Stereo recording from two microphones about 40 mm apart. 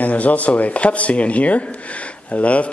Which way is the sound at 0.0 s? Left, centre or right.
Left.